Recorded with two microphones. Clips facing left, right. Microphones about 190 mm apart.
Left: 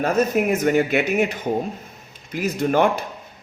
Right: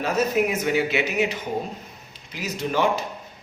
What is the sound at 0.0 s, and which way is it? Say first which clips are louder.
Speech: left 3 dB; 50° left (ahead or behind).